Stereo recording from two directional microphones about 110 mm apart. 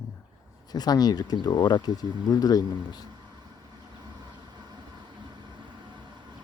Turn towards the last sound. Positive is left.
turn(degrees=-40)  # may be behind; listen again after turning